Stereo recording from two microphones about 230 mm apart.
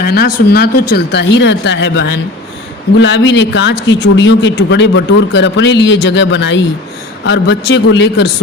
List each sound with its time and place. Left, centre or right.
0.0 s a man's voice: left